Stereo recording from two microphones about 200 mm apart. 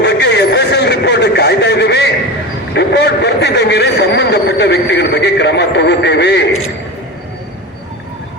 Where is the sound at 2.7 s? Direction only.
55° left (ahead or behind).